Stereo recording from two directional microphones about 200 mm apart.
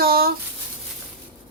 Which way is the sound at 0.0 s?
50° right (ahead or behind).